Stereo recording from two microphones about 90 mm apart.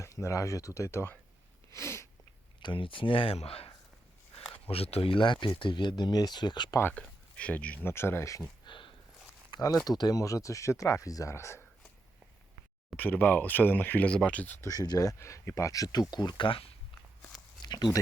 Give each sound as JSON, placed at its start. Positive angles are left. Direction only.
{"t": 0.0, "sound": "speech", "side_deg": 35}
{"t": 1.7, "sound": "sneeze", "side_deg": 30}
{"t": 2.6, "sound": "speech", "side_deg": 65}
{"t": 4.7, "sound": "speech", "side_deg": 90}
{"t": 6.9, "sound": "speech", "side_deg": 15}
{"t": 7.9, "sound": "speech", "side_deg": 25}
{"t": 8.6, "sound": "a sound", "side_deg": 65}
{"t": 9.8, "sound": "speech", "side_deg": 50}
{"t": 13.0, "sound": "speech", "side_deg": 20}
{"t": 14.6, "sound": "speech", "side_deg": 45}
{"t": 16.5, "sound": "speech", "side_deg": 90}
{"t": 17.6, "sound": "a sound", "side_deg": 50}